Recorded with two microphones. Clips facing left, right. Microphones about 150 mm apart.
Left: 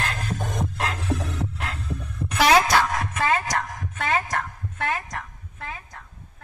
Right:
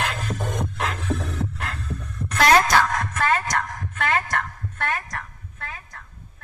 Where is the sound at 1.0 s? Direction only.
5° left (ahead or behind).